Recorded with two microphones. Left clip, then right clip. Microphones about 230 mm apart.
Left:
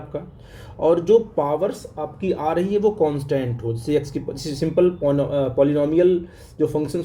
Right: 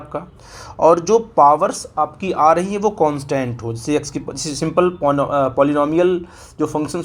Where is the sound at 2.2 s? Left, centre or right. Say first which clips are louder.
Right 7 dB; centre.